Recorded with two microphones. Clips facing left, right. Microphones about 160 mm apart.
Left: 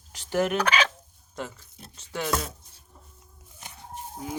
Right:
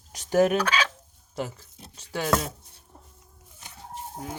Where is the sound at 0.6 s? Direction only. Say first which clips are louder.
Left 1 dB; 15° left (ahead or behind).